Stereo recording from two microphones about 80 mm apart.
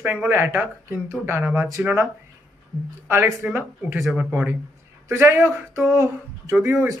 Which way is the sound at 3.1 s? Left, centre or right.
Right.